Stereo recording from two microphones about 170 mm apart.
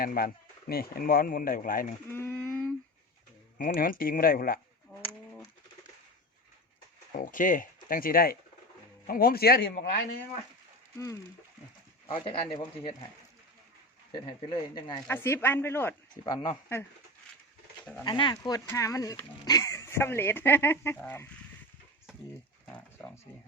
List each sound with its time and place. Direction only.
0.0 s speech: 60° left (ahead or behind)
2.0 s speech: 15° left (ahead or behind)
3.8 s speech: 55° left (ahead or behind)
7.2 s speech: 50° left (ahead or behind)
10.9 s speech: 20° left (ahead or behind)
12.1 s speech: 35° left (ahead or behind)
14.1 s speech: 25° left (ahead or behind)
15.0 s speech: 15° left (ahead or behind)
16.2 s speech: 25° left (ahead or behind)
18.0 s speech: 25° left (ahead or behind); by 21.2 s 10° left (ahead or behind)
22.6 s speech: 10° left (ahead or behind)